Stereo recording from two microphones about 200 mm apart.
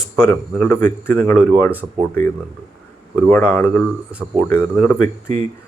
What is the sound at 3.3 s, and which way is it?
Speech, 10° left (ahead or behind).